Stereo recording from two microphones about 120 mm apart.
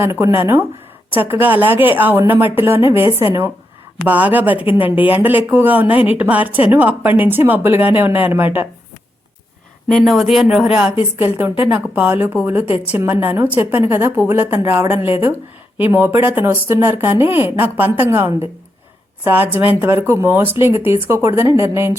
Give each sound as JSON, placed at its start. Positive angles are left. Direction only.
{"t": 0.0, "sound": "speech", "side_deg": -20}
{"t": 10.0, "sound": "speech", "side_deg": 0}